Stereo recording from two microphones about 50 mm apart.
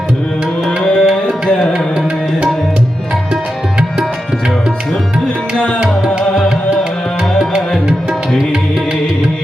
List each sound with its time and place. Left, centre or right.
0.8 s tabla: centre